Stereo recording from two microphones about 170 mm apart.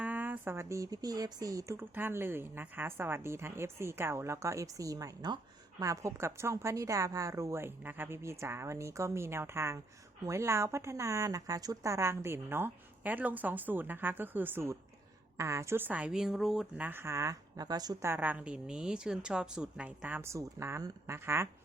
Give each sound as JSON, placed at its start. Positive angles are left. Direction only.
{"t": 0.0, "sound": "a woman's voice", "side_deg": -10}